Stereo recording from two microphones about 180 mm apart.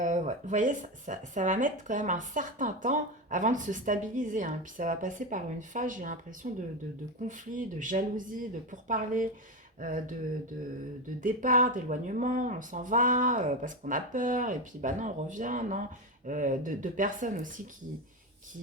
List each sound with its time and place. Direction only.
0.0 s speech: 45° right (ahead or behind)
11.2 s speech: 50° right (ahead or behind)